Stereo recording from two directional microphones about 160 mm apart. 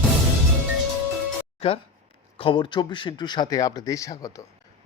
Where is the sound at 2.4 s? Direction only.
30° left (ahead or behind).